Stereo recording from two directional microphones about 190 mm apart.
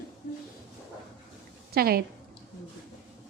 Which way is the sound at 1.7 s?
55° right (ahead or behind).